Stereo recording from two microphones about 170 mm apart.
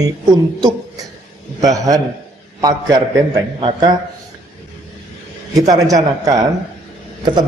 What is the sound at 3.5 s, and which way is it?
Speech, 30° right (ahead or behind).